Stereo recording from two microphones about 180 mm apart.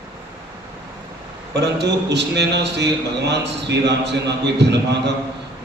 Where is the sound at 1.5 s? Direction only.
70° right (ahead or behind).